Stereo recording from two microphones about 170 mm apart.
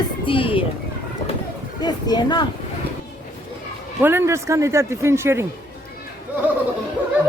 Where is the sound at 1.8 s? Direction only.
25° left (ahead or behind).